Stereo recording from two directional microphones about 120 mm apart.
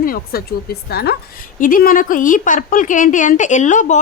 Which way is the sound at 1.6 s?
90° left.